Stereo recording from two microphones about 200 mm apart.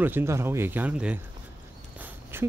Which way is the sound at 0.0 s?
10° right (ahead or behind).